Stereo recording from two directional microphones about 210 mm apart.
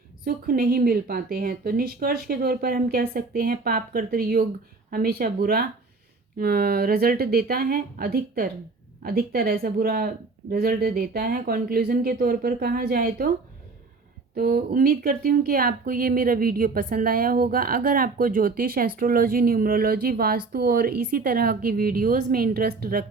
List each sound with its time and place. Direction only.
0.3 s speech: 45° right (ahead or behind)
14.3 s speech: 45° right (ahead or behind)